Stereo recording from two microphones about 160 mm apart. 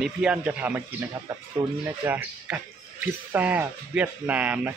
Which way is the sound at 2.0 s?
10° right (ahead or behind).